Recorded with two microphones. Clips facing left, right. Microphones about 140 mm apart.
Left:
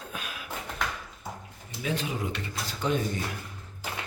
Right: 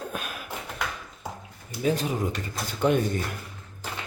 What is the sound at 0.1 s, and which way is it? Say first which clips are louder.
Beatboxing: right 4 dB; 50° right (ahead or behind).